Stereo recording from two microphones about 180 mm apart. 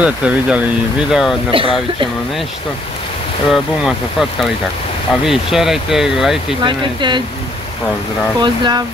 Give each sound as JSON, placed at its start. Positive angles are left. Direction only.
{"t": 0.0, "sound": "speech", "side_deg": -5}
{"t": 1.5, "sound": "speech", "side_deg": -30}
{"t": 3.4, "sound": "speech", "side_deg": 0}
{"t": 6.6, "sound": "speech", "side_deg": -25}
{"t": 8.4, "sound": "speech", "side_deg": -25}